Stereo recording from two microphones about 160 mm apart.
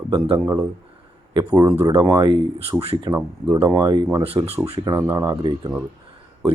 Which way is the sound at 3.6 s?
30° right (ahead or behind).